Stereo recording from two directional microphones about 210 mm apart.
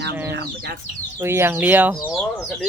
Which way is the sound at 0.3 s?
50° right (ahead or behind).